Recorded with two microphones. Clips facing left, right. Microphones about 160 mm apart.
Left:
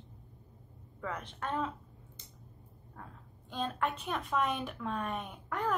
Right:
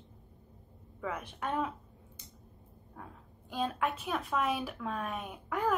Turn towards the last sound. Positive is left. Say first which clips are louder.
# right 3 dB
turn(degrees=-5)  # may be behind; listen again after turning